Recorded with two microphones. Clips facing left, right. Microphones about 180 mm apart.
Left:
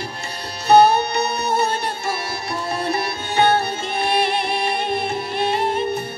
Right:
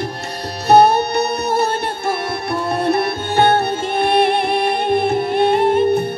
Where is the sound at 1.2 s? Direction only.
60° right (ahead or behind).